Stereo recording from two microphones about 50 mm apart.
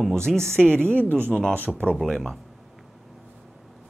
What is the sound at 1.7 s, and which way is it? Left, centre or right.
Speech, centre.